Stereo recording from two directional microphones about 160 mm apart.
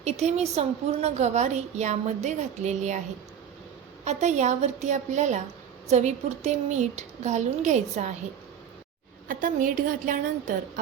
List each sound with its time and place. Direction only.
0.0 s a woman's voice: 45° right (ahead or behind)
4.0 s a woman's voice: 45° right (ahead or behind)
9.2 s a woman's voice: 60° right (ahead or behind)